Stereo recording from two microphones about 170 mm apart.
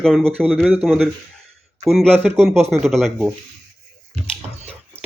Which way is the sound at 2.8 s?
Centre (ahead or behind).